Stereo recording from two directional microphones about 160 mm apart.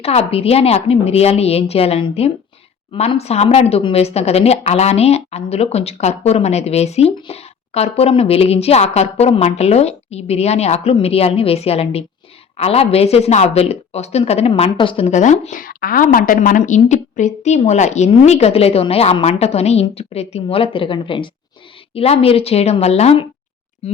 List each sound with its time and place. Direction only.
0.0 s speech: 40° left (ahead or behind)